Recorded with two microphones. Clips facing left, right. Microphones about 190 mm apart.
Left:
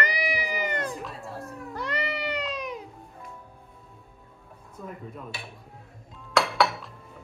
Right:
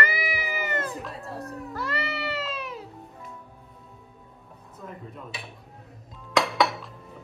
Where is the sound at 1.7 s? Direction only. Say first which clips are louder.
Even; 15° left (ahead or behind).